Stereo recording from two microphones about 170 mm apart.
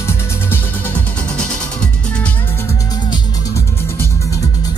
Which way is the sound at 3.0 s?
25° left (ahead or behind).